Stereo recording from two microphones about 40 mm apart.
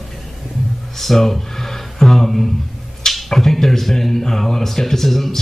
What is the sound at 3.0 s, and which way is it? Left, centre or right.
Speech, centre.